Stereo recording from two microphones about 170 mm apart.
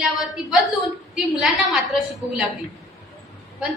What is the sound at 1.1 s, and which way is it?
Speech, centre (ahead or behind).